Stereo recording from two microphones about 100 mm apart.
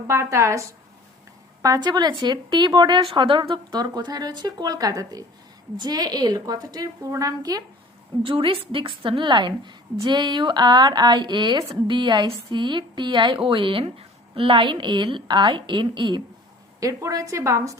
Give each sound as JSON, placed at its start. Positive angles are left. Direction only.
{"t": 0.1, "sound": "a woman's voice", "side_deg": -30}
{"t": 8.2, "sound": "speech", "side_deg": -60}
{"t": 16.8, "sound": "a woman's voice", "side_deg": -35}